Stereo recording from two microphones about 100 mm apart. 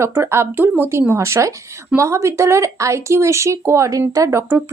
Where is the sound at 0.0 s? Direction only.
25° right (ahead or behind).